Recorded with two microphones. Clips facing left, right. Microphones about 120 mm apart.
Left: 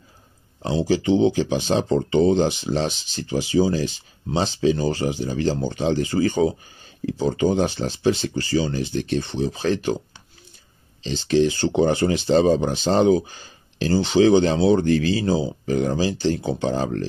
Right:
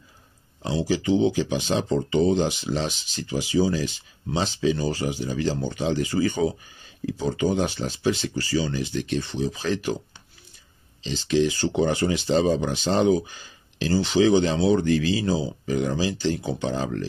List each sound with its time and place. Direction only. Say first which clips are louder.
0.6 s speech: left 4 dB; 30° left (ahead or behind)
11.0 s speech: left 3 dB; 35° left (ahead or behind)